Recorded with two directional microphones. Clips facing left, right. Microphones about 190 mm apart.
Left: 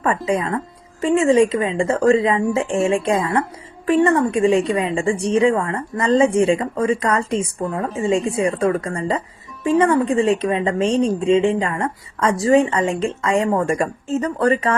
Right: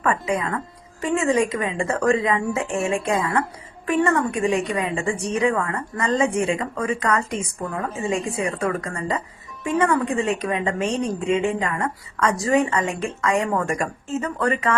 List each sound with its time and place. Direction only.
0.3 s a woman's voice: 30° left (ahead or behind)